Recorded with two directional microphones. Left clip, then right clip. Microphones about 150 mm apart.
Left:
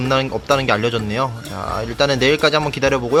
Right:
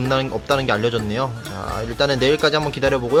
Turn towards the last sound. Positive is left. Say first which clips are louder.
# left 2 dB
turn(degrees=10)  # may be behind; listen again after turning